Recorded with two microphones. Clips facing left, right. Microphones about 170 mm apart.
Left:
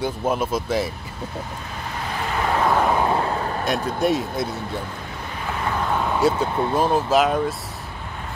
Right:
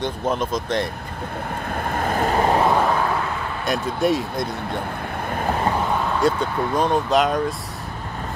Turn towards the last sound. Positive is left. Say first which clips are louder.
# even
turn(degrees=5)  # may be behind; listen again after turning